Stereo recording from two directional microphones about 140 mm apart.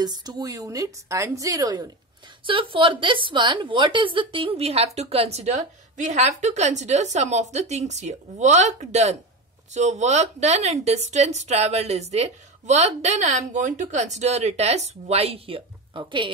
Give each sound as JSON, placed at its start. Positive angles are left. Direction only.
{"t": 0.0, "sound": "a woman's voice", "side_deg": -30}
{"t": 2.4, "sound": "a woman's voice", "side_deg": -35}